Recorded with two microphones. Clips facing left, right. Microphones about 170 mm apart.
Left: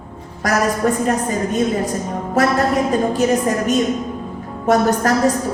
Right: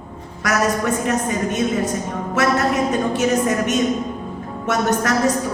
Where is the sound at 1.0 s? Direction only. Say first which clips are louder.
Left 2 dB; 35° left (ahead or behind).